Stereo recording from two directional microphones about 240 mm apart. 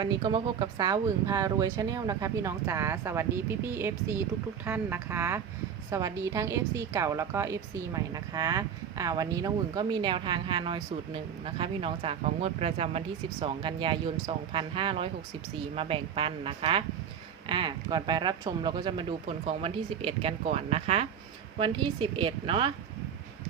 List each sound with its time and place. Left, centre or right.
0.0 s a woman's voice: centre